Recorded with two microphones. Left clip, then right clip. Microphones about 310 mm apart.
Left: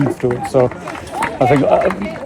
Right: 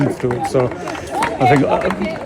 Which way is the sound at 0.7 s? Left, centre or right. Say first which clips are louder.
Right 2 dB; right.